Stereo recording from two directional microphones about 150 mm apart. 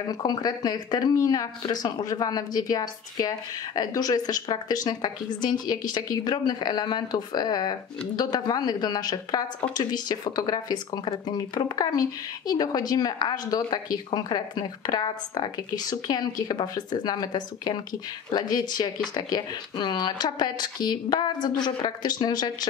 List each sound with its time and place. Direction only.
0.1 s a woman's voice: 25° left (ahead or behind)